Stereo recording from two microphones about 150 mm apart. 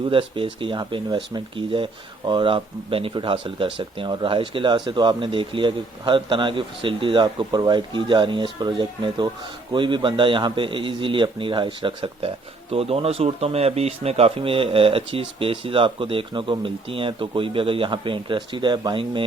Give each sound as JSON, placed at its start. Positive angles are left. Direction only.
{"t": 0.0, "sound": "speech", "side_deg": -35}